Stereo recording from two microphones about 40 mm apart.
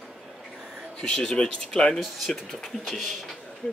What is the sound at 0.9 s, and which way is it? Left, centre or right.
Speech, centre.